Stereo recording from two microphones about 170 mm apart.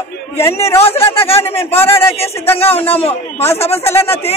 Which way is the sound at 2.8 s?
35° left (ahead or behind).